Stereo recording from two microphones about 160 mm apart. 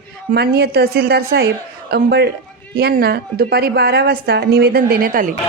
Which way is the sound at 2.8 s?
75° right (ahead or behind).